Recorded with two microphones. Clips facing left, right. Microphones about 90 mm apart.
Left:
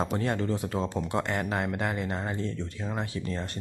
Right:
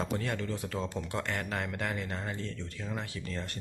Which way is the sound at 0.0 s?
35° left (ahead or behind).